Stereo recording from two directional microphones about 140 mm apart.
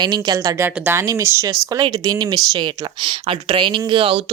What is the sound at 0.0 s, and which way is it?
Speech, 30° right (ahead or behind).